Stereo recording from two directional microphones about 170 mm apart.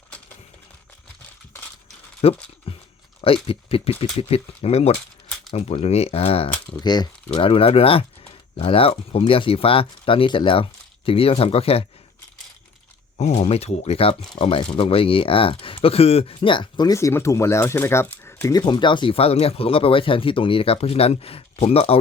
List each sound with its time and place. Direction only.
2.2 s speech: 35° left (ahead or behind)
2.7 s a sound: 35° left (ahead or behind)
3.2 s speech: 35° left (ahead or behind)
13.1 s speech: 40° left (ahead or behind)